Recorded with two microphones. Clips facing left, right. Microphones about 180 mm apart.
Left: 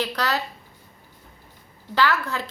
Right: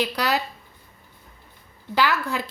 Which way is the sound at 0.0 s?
10° right (ahead or behind).